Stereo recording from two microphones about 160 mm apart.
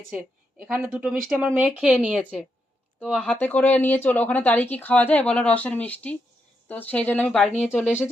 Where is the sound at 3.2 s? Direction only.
10° left (ahead or behind).